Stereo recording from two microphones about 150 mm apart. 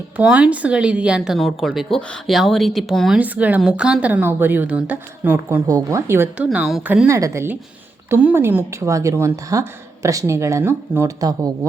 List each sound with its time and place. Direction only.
0.2 s speech: 5° right (ahead or behind)
3.2 s speech: 10° right (ahead or behind)
7.1 s a woman's voice: 20° right (ahead or behind)